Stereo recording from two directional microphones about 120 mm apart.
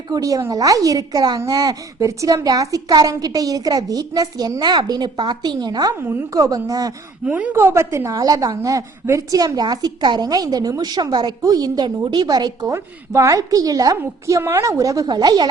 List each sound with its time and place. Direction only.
0.1 s a woman's voice: 30° right (ahead or behind)
6.0 s a woman's voice: 20° right (ahead or behind)
6.4 s a woman's voice: 30° right (ahead or behind)
7.3 s a woman's voice: 10° right (ahead or behind); by 15.4 s 35° right (ahead or behind)